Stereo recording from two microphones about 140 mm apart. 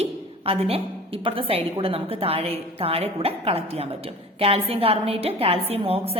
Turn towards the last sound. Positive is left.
turn(degrees=-45)  # may be behind; listen again after turning